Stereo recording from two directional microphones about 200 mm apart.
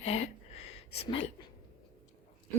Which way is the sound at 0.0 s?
35° left (ahead or behind).